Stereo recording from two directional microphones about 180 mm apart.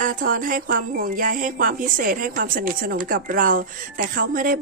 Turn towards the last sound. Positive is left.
turn(degrees=-50)  # may be behind; listen again after turning